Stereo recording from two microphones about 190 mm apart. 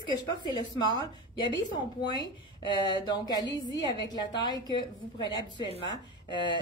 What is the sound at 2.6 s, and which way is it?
A woman's voice, 25° left (ahead or behind).